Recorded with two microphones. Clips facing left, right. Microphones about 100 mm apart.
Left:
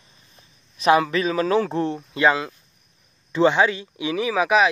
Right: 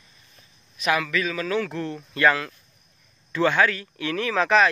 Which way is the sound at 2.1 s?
20° left (ahead or behind).